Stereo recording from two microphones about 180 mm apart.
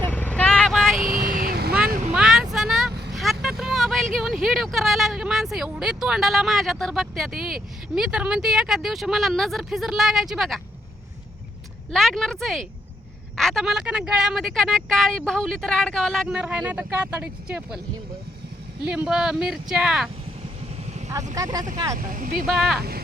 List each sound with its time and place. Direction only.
0.0 s vehicle: 10° left (ahead or behind)
0.9 s vehicle: 50° right (ahead or behind)
1.9 s vehicle: 45° right (ahead or behind)
2.1 s vehicle: 5° right (ahead or behind)
3.4 s speech: centre (ahead or behind)
11.9 s speech: centre (ahead or behind)
18.9 s speech: 5° right (ahead or behind)
21.3 s speech: 20° right (ahead or behind)
21.9 s speech: 50° right (ahead or behind)
22.4 s speech: centre (ahead or behind)